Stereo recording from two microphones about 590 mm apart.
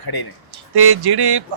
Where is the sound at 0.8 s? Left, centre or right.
Right.